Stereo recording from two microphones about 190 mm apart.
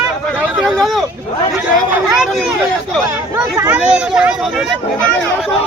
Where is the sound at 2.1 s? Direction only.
Centre (ahead or behind).